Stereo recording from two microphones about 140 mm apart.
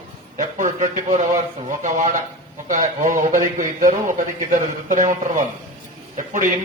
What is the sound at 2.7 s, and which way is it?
A man's voice, 65° right (ahead or behind).